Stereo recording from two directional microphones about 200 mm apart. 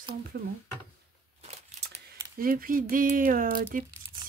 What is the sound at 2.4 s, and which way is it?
Speech, 45° right (ahead or behind).